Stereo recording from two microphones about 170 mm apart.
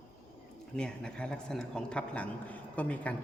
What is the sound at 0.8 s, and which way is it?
A man's voice, 5° left (ahead or behind).